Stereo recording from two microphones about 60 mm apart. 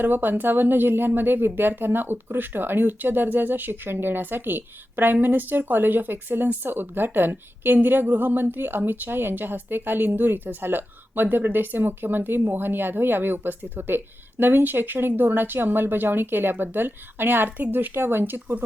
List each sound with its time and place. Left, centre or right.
0.0 s speech: right